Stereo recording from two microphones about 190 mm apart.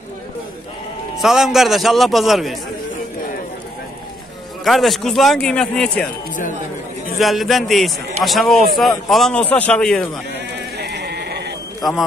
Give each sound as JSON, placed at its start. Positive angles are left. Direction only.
{"t": 1.1, "sound": "a man's voice", "side_deg": 0}
{"t": 4.6, "sound": "a man's voice", "side_deg": 0}
{"t": 7.2, "sound": "a man's voice", "side_deg": 0}
{"t": 10.8, "sound": "sheep", "side_deg": -60}